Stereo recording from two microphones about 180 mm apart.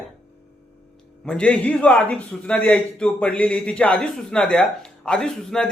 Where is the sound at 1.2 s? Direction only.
5° left (ahead or behind).